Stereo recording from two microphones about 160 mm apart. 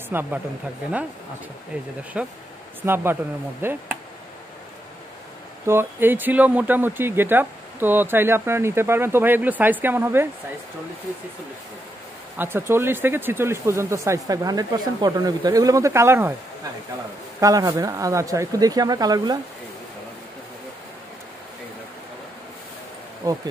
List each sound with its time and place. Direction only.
0.1 s speech: 15° right (ahead or behind)
2.1 s speech: 5° right (ahead or behind)
5.7 s speech: 15° right (ahead or behind)
12.4 s speech: 15° right (ahead or behind)
17.4 s speech: 20° right (ahead or behind)
23.2 s speech: 20° right (ahead or behind)